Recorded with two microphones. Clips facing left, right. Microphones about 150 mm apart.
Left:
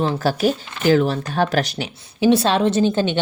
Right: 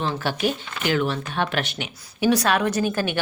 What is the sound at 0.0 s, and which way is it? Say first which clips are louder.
A woman's voice: left 5 dB; 35° left (ahead or behind).